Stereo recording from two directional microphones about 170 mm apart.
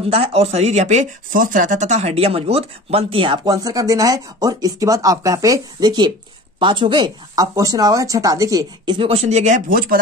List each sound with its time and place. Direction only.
0.1 s speech: 35° right (ahead or behind); by 9.9 s 55° right (ahead or behind)